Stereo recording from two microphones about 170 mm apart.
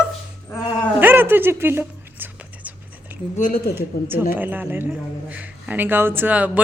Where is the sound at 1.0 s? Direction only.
10° right (ahead or behind).